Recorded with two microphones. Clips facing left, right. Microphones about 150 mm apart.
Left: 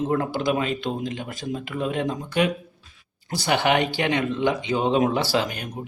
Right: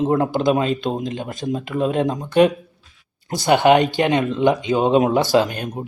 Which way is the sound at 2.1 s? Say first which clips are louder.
Right 10 dB; 40° right (ahead or behind).